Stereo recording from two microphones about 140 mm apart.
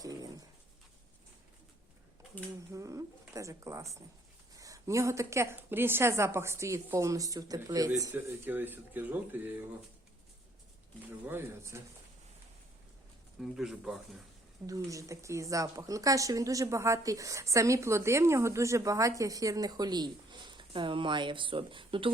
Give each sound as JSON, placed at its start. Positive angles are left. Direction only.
{"t": 0.0, "sound": "dog", "side_deg": -25}
{"t": 2.7, "sound": "speech", "side_deg": -20}
{"t": 8.1, "sound": "speech", "side_deg": -15}
{"t": 11.3, "sound": "speech", "side_deg": -20}
{"t": 13.4, "sound": "speech", "side_deg": -5}
{"t": 14.7, "sound": "speech", "side_deg": -25}